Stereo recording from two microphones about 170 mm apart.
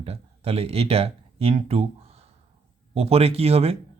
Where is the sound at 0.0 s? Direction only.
35° right (ahead or behind).